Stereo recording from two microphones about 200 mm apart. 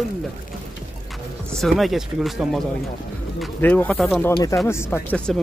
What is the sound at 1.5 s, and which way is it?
Speech, centre (ahead or behind).